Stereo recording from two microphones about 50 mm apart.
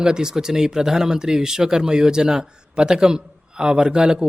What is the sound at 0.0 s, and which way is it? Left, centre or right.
Speech, centre.